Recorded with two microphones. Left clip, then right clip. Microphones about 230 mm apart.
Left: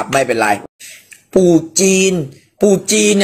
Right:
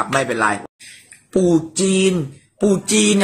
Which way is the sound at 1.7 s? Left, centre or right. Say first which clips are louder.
Left 5 dB; centre.